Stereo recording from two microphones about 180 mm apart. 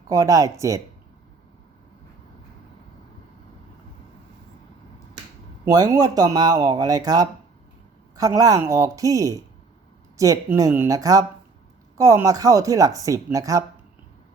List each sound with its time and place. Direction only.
0.1 s speech: 20° right (ahead or behind)
5.6 s speech: 20° right (ahead or behind)